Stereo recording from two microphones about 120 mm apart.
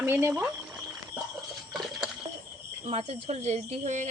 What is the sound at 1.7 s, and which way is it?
Patter, centre (ahead or behind).